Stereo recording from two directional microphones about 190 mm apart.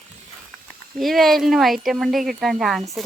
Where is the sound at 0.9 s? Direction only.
Centre (ahead or behind).